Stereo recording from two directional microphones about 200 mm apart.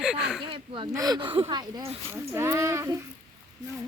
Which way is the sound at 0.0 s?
5° right (ahead or behind).